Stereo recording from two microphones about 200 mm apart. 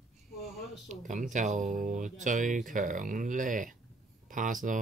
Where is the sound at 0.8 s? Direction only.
40° right (ahead or behind).